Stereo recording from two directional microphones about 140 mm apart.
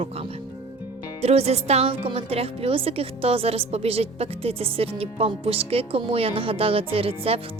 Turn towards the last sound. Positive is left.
turn(degrees=-45)  # may be behind; listen again after turning